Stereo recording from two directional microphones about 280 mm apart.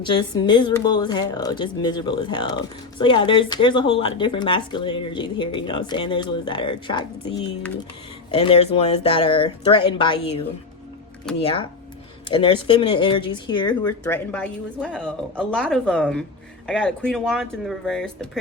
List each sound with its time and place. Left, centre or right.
0.0 s speech: centre
8.3 s speech: left
11.3 s speech: centre
12.3 s speech: centre
14.0 s speech: centre